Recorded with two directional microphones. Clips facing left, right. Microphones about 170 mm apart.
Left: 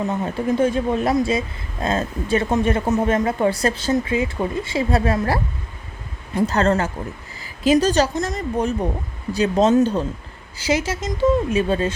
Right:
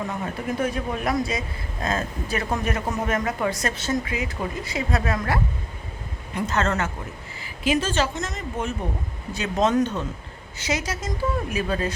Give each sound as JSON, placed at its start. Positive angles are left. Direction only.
{"t": 0.1, "sound": "a woman's voice", "side_deg": 25}